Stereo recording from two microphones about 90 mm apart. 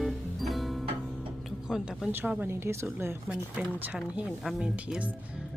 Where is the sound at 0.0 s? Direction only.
Centre (ahead or behind).